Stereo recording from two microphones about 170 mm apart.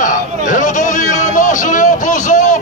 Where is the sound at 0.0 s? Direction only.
50° left (ahead or behind).